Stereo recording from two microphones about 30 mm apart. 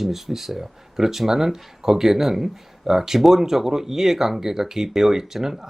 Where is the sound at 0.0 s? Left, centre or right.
Centre.